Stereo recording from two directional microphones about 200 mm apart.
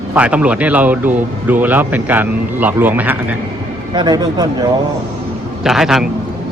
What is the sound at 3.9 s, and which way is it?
Speech, 20° right (ahead or behind).